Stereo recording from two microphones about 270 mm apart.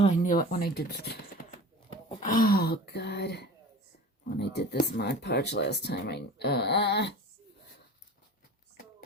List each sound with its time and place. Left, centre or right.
0.0 s speech: left